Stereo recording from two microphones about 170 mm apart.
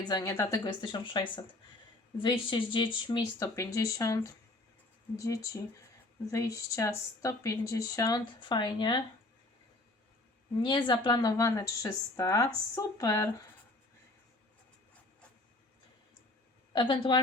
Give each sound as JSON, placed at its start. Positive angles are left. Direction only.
{"t": 0.0, "sound": "speech", "side_deg": 25}
{"t": 10.6, "sound": "speech", "side_deg": 30}
{"t": 16.7, "sound": "speech", "side_deg": 30}